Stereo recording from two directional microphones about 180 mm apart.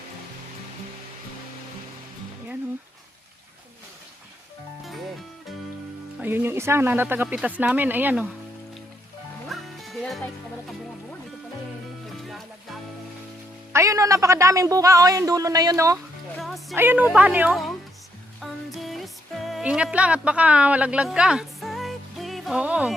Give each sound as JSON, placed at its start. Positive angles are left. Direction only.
{"t": 6.2, "sound": "speech", "side_deg": -10}
{"t": 9.5, "sound": "music", "side_deg": 0}
{"t": 13.7, "sound": "speech", "side_deg": -15}
{"t": 16.4, "sound": "music", "side_deg": 0}
{"t": 16.7, "sound": "speech", "side_deg": -10}
{"t": 18.3, "sound": "music", "side_deg": 0}